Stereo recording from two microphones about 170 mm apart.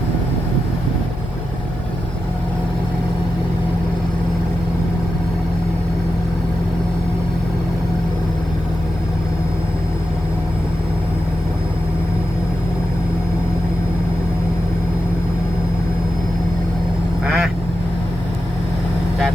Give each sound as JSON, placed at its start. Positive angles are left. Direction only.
{"t": 17.2, "sound": "quack", "side_deg": 0}